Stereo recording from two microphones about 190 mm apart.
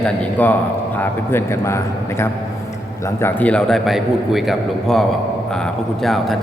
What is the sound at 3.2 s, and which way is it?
A man's voice, 10° left (ahead or behind).